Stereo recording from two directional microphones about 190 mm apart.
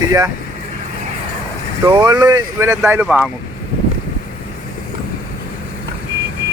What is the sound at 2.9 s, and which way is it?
Speech, 5° right (ahead or behind).